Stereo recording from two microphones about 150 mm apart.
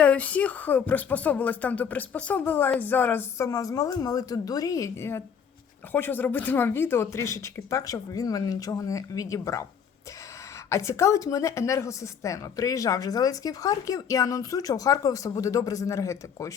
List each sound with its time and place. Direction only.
0.0 s a woman's voice: 10° left (ahead or behind)
10.7 s a woman's voice: 20° left (ahead or behind)